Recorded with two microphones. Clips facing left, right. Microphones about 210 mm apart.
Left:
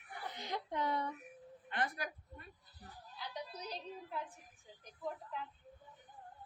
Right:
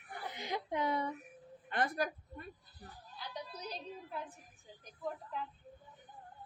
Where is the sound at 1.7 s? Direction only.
40° right (ahead or behind).